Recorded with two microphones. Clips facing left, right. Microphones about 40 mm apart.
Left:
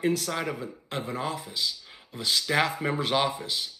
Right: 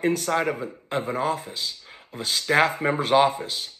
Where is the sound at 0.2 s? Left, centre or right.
Centre.